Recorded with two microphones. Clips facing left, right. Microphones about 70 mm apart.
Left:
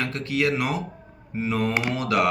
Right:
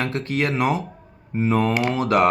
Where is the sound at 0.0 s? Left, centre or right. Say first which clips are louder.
Right 1 dB; right.